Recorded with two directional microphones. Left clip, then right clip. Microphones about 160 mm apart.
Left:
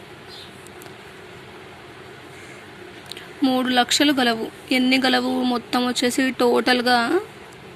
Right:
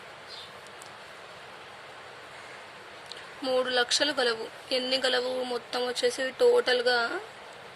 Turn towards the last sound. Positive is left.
turn(degrees=20)  # may be behind; listen again after turning